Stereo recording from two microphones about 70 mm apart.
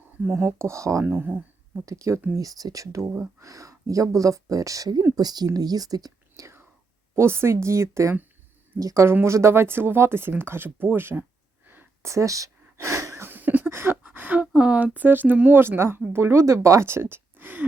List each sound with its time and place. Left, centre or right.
0.4 s speech: right
1.0 s speech: right
1.8 s speech: right
5.1 s speech: right
5.5 s speech: right
7.2 s speech: right
9.2 s speech: right
12.0 s a sound: right
13.7 s a sound: right
14.5 s speech: centre